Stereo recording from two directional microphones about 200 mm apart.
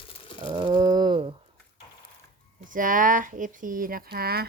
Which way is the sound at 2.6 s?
40° right (ahead or behind).